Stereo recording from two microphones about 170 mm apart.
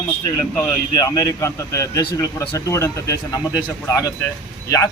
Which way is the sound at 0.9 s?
20° left (ahead or behind).